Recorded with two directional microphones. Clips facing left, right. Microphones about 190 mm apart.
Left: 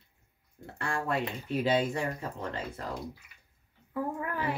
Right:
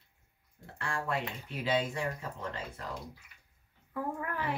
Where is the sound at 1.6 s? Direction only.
35° left (ahead or behind).